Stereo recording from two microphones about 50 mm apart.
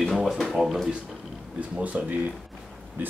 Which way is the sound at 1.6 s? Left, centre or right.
Right.